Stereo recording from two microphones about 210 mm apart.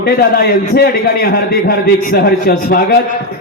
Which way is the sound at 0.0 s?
45° left (ahead or behind).